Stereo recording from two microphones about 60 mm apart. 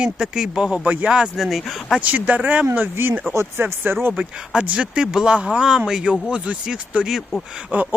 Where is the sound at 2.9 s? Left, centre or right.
Right.